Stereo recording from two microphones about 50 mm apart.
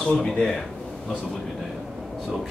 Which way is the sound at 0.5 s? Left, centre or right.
Centre.